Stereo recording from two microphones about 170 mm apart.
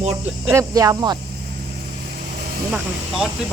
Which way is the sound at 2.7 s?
5° right (ahead or behind).